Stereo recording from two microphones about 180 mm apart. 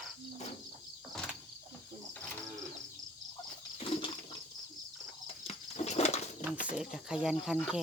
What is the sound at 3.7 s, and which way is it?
Toilet flush, 35° left (ahead or behind).